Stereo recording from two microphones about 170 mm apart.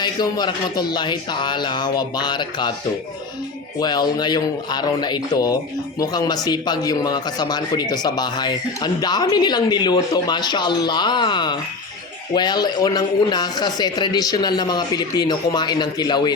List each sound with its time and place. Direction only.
0.0 s speech: 25° left (ahead or behind)
3.8 s speech: 25° left (ahead or behind)